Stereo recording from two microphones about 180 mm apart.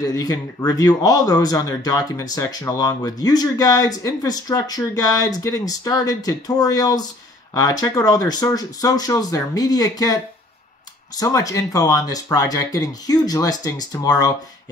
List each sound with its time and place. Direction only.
0.0 s a man's voice: 20° left (ahead or behind)
11.1 s a man's voice: 20° left (ahead or behind)